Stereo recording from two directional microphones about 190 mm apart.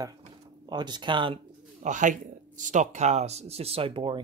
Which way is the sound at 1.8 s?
40° right (ahead or behind).